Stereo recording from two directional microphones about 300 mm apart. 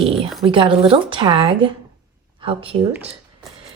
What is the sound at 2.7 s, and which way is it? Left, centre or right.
Speech, centre.